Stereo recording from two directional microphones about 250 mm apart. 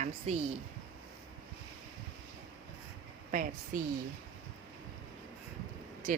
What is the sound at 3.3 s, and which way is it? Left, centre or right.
Speech, right.